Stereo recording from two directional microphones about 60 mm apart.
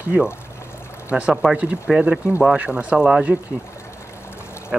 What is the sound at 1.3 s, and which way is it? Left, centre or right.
Speech, centre.